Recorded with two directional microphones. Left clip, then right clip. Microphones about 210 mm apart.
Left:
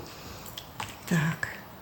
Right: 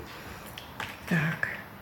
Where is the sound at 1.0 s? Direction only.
35° left (ahead or behind).